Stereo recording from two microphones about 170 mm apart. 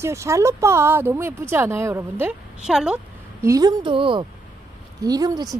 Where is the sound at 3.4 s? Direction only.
20° right (ahead or behind).